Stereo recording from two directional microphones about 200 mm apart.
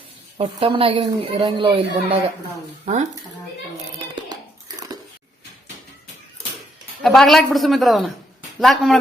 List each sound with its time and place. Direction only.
0.3 s a woman's voice: 25° right (ahead or behind)
3.9 s hands: 20° right (ahead or behind)
7.0 s a woman's voice: centre (ahead or behind)